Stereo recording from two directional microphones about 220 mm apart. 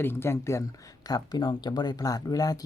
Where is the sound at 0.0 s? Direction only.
10° left (ahead or behind).